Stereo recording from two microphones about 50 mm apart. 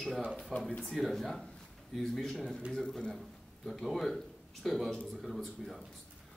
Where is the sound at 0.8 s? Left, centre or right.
Centre.